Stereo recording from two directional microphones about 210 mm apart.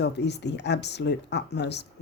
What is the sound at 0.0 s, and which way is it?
Speech, 55° left (ahead or behind).